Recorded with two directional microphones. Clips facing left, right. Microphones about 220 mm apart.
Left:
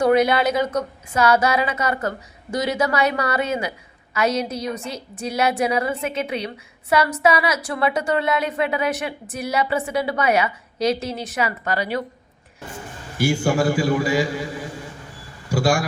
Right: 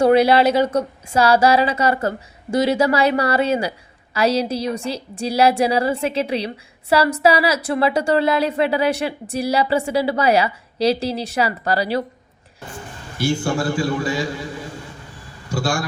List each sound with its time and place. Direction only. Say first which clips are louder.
0.0 s a woman's voice: right 3 dB; 30° right (ahead or behind)
13.2 s a man's voice: left 1 dB; 10° left (ahead or behind)
15.4 s a sound: left 3 dB; 10° left (ahead or behind)